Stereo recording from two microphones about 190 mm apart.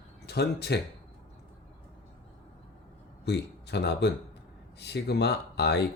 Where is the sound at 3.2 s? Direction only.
60° left (ahead or behind).